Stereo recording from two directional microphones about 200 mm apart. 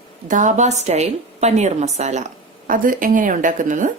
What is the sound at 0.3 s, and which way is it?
A woman's voice, 40° right (ahead or behind).